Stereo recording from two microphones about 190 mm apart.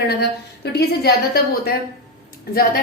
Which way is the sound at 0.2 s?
60° left (ahead or behind).